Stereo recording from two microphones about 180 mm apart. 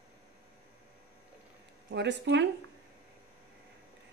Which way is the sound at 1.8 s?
75° right (ahead or behind).